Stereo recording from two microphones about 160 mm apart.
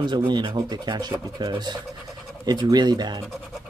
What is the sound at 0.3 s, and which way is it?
Speech, 30° right (ahead or behind).